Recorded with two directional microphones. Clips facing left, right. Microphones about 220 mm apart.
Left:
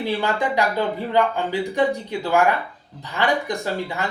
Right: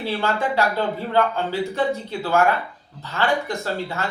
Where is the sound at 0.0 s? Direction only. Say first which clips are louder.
Left 1 dB; 15° left (ahead or behind).